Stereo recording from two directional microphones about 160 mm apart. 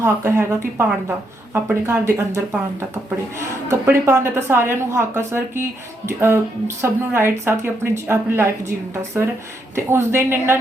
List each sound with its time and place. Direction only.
0.0 s speech: 15° right (ahead or behind)
1.5 s speech: 15° right (ahead or behind)